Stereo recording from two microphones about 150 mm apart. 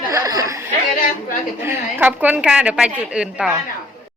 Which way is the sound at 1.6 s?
15° right (ahead or behind).